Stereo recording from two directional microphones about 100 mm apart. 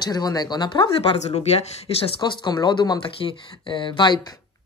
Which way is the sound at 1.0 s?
80° left.